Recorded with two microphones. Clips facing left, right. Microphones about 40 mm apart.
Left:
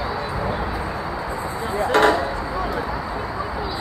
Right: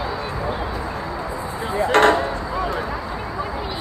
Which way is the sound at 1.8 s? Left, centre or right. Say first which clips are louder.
Right 2 dB; right.